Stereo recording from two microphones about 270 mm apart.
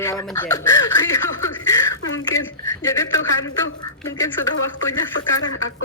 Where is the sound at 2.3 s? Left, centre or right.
Left.